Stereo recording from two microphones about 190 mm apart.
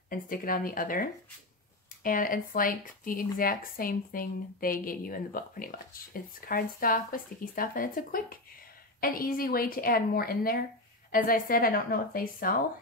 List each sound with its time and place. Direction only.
0.1 s speech: 45° left (ahead or behind)
2.0 s speech: 45° left (ahead or behind)